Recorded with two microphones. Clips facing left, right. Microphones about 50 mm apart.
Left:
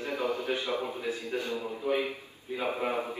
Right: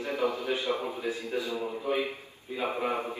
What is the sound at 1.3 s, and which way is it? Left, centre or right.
Speech, left.